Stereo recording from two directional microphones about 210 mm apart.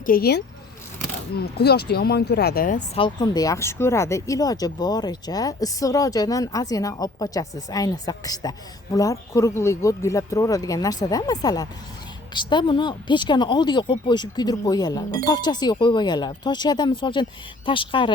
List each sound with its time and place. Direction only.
0.0 s speech: 45° left (ahead or behind)
3.0 s speech: 20° left (ahead or behind)